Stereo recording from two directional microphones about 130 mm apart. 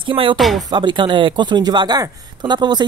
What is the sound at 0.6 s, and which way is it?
Speech, 35° right (ahead or behind).